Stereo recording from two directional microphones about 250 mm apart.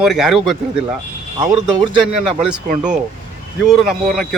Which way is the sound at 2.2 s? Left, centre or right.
Centre.